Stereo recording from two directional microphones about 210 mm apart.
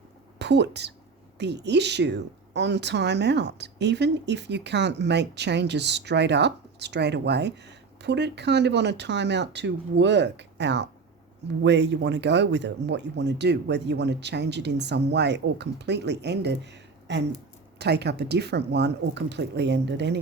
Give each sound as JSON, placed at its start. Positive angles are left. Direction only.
{"t": 0.3, "sound": "a woman's voice", "side_deg": -55}